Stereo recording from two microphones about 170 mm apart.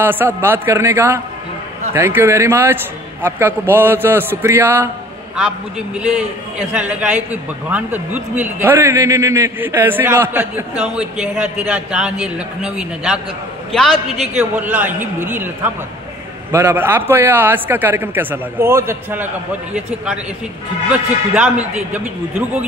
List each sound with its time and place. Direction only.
0.0 s a man's voice: 10° right (ahead or behind); by 13.9 s 5° left (ahead or behind)
14.3 s a man's voice: 10° right (ahead or behind)
20.9 s a man's voice: 10° right (ahead or behind)